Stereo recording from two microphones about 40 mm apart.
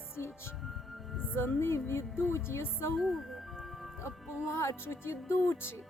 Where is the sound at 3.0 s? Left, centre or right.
Centre.